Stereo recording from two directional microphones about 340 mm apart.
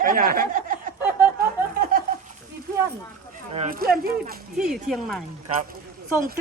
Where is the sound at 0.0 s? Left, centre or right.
Right.